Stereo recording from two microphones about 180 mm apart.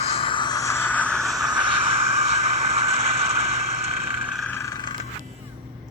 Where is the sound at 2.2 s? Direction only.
35° right (ahead or behind).